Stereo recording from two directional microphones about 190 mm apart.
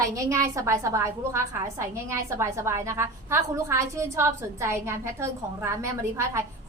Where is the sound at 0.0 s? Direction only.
15° right (ahead or behind).